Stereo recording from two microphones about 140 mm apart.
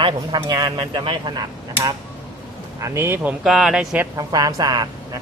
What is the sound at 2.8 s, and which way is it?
Speech, 20° right (ahead or behind).